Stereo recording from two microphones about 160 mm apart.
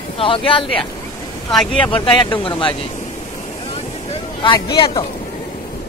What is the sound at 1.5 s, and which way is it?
Speech, 10° left (ahead or behind).